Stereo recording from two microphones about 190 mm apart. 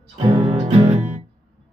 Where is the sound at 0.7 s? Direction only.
35° right (ahead or behind).